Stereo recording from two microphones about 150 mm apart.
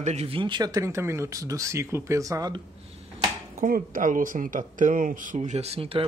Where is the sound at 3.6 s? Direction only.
65° right (ahead or behind).